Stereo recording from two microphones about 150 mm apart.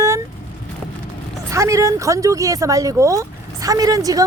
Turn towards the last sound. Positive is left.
turn(degrees=-25)  # may be behind; listen again after turning